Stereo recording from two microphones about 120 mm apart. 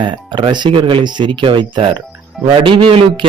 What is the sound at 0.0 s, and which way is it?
A man's voice, 40° right (ahead or behind).